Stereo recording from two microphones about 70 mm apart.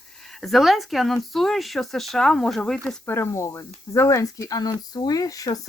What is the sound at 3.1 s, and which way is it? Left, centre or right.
Speech, left.